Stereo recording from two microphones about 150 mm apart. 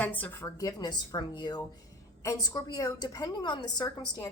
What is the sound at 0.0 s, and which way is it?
A woman's voice, 10° left (ahead or behind).